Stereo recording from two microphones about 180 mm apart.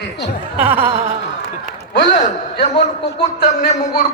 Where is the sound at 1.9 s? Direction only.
70° left (ahead or behind).